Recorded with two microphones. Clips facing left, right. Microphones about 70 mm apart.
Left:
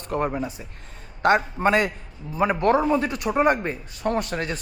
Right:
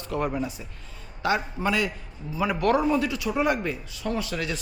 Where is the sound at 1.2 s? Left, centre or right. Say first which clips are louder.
Left 6 dB; left.